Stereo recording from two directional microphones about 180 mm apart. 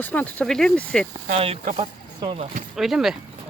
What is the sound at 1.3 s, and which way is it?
Speech, 35° right (ahead or behind).